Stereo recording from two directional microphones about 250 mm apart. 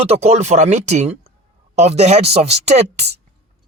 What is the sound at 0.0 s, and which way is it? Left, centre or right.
Speech, right.